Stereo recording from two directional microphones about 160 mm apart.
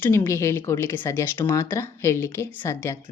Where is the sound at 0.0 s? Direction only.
15° left (ahead or behind).